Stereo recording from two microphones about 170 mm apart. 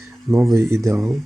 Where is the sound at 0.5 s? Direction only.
15° right (ahead or behind).